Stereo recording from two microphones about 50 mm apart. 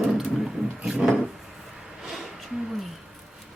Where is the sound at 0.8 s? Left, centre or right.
Centre.